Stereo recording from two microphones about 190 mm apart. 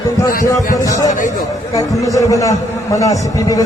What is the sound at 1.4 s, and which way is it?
A man's voice, 20° left (ahead or behind).